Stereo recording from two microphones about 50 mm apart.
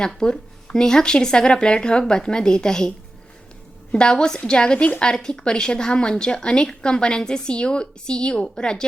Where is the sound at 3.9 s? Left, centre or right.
Centre.